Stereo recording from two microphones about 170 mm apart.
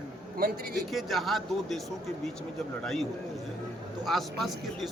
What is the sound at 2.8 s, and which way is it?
Speech, centre (ahead or behind).